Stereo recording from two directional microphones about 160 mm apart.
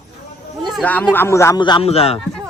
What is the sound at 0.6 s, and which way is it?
Speech, 5° left (ahead or behind).